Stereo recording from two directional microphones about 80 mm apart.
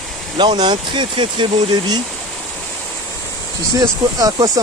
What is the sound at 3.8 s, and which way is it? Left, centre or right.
Speech, right.